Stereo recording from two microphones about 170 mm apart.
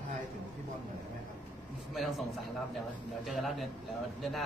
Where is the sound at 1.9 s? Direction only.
Centre (ahead or behind).